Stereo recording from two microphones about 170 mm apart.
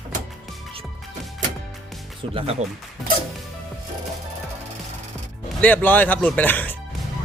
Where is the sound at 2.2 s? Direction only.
35° right (ahead or behind).